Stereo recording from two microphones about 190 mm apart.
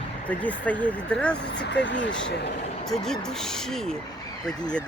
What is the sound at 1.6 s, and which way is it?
Speech, 70° left (ahead or behind).